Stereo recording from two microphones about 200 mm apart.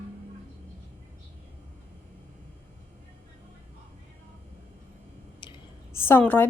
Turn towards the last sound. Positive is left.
turn(degrees=10)  # may be behind; listen again after turning